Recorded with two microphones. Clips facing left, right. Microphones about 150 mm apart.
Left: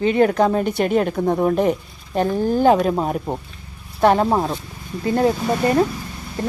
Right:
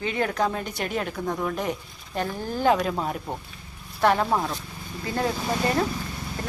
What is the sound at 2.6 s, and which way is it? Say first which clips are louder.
Speech: left 4 dB; 25° left (ahead or behind).